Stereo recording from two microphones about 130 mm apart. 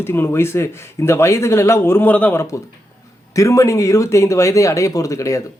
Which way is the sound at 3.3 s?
25° left (ahead or behind).